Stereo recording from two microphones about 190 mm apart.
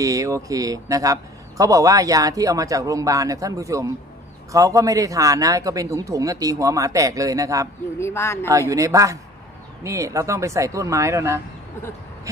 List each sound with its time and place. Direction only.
0.0 s speech: 15° right (ahead or behind)
8.0 s speech: 15° left (ahead or behind)
8.5 s speech: 15° right (ahead or behind)